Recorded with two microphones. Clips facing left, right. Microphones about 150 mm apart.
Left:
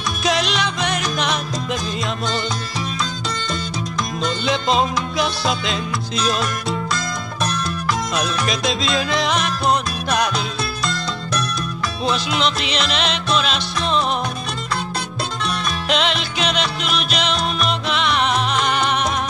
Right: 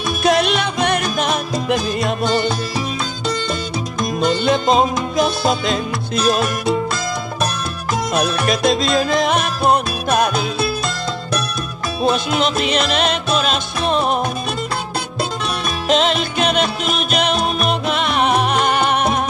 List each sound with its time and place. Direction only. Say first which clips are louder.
0.2 s music: right 5 dB; 55° right (ahead or behind)
4.5 s music: right 2 dB; 45° right (ahead or behind)
8.1 s music: right 4 dB; 55° right (ahead or behind)
12.0 s music: right 4 dB; 50° right (ahead or behind)
15.9 s music: right 5 dB; 45° right (ahead or behind)